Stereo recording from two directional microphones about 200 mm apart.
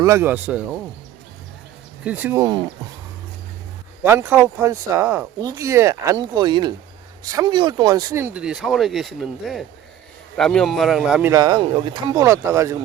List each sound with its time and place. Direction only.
0.0 s speech: 15° right (ahead or behind)
2.0 s speech: 10° right (ahead or behind)
4.0 s speech: 10° right (ahead or behind)
11.3 s speech: 20° right (ahead or behind)